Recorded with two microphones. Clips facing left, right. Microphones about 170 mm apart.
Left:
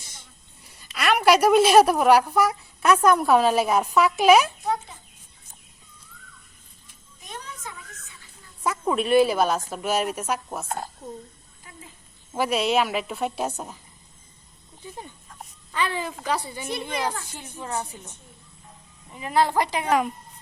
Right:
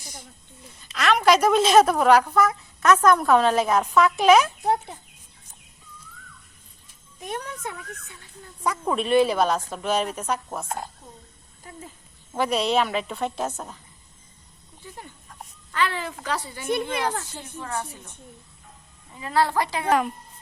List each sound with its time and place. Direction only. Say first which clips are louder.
0.9 s speech: even; 10° left (ahead or behind)
4.6 s a child's voice: right 3 dB; 60° right (ahead or behind)
7.2 s a sound: right 7 dB; 60° right (ahead or behind)
8.6 s speech: left 1 dB; 5° left (ahead or behind)
12.3 s a woman's voice: even; 5° left (ahead or behind)
15.7 s a woman's voice: right 1 dB; 15° left (ahead or behind)
19.1 s speech: left 1 dB; 15° left (ahead or behind)
19.9 s a woman's voice: right 2 dB; centre (ahead or behind)